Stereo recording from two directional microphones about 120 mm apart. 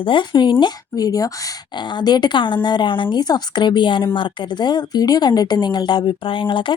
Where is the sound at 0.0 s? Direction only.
40° left (ahead or behind).